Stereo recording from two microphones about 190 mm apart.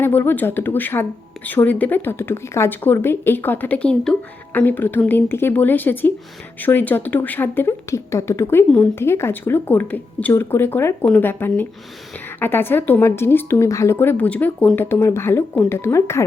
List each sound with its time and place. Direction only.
0.0 s a woman's voice: 10° left (ahead or behind)